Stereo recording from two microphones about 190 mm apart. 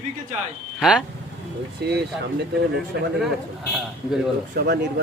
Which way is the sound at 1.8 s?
55° right (ahead or behind).